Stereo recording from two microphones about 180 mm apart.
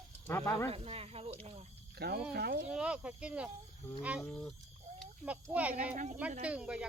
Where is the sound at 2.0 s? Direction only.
65° right (ahead or behind).